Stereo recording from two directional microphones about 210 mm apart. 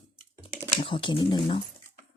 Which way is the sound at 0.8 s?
25° left (ahead or behind).